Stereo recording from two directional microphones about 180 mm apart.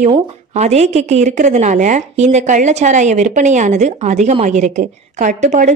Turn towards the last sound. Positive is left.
turn(degrees=-40)  # may be behind; listen again after turning